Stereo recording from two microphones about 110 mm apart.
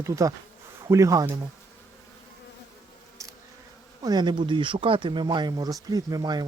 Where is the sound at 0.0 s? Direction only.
30° right (ahead or behind).